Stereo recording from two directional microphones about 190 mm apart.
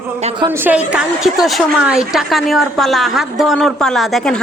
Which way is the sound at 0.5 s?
10° right (ahead or behind).